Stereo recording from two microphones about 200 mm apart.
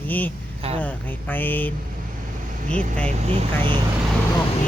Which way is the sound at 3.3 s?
25° right (ahead or behind).